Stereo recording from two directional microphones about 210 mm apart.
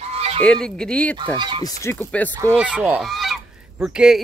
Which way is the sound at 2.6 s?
5° right (ahead or behind).